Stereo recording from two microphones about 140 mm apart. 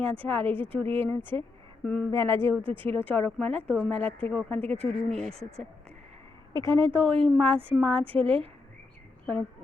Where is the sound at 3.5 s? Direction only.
45° right (ahead or behind).